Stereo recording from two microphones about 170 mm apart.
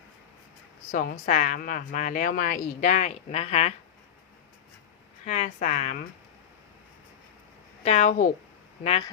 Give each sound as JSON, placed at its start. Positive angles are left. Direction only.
{"t": 0.9, "sound": "a woman's voice", "side_deg": 50}
{"t": 5.2, "sound": "a woman's voice", "side_deg": 40}
{"t": 7.9, "sound": "a woman's voice", "side_deg": 45}